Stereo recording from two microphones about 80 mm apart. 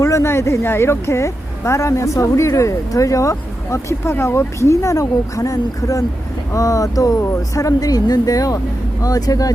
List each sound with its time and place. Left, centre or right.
0.0 s speech: left